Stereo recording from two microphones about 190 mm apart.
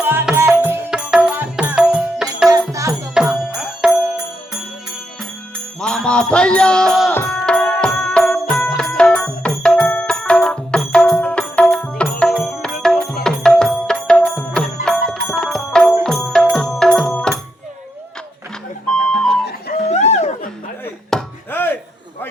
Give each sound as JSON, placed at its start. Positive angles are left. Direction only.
{"t": 0.0, "sound": "music", "side_deg": -10}
{"t": 2.5, "sound": "music", "side_deg": -15}
{"t": 3.2, "sound": "music", "side_deg": 0}
{"t": 5.5, "sound": "music", "side_deg": 5}
{"t": 19.5, "sound": "music", "side_deg": 55}
{"t": 19.9, "sound": "a sound", "side_deg": 35}
{"t": 21.1, "sound": "chopping", "side_deg": 5}